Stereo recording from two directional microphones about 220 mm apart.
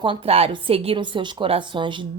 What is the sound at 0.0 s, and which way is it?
A woman's voice, 25° right (ahead or behind).